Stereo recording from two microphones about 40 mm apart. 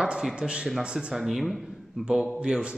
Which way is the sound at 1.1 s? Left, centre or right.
Centre.